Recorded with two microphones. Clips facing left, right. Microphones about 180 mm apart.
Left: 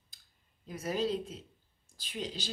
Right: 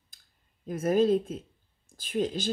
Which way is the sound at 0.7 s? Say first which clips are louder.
Right 9 dB; 50° right (ahead or behind).